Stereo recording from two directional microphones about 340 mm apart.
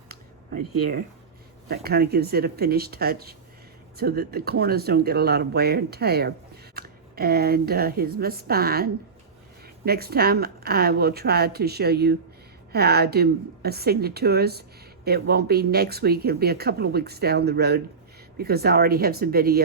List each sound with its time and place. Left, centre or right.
1.6 s a woman's voice: right